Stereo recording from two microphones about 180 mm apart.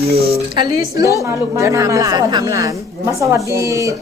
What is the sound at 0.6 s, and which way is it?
A woman's voice, 20° right (ahead or behind).